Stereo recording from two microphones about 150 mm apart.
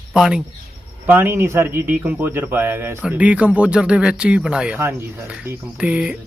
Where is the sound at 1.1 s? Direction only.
15° right (ahead or behind).